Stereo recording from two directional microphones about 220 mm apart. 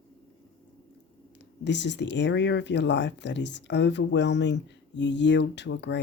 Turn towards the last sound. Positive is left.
turn(degrees=55)  # may be behind; listen again after turning